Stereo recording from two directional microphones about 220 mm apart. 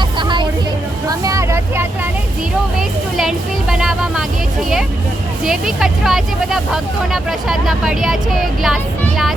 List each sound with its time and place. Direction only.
0.2 s music: 20° right (ahead or behind)
1.2 s vehicle: 15° right (ahead or behind)
3.2 s a sound: centre (ahead or behind)
5.5 s speech: centre (ahead or behind)